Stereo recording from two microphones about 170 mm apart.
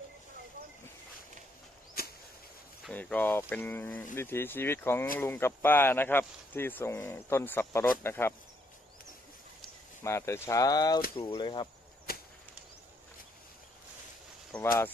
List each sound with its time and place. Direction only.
2.9 s speech: 10° left (ahead or behind)
10.0 s speech: 15° left (ahead or behind)
12.1 s chop: 60° left (ahead or behind)
14.5 s a sound: 5° left (ahead or behind)